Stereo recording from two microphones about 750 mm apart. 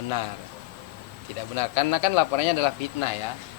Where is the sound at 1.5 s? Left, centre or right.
Left.